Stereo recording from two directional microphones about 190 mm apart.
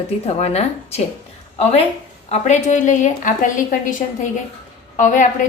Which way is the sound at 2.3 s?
40° left (ahead or behind).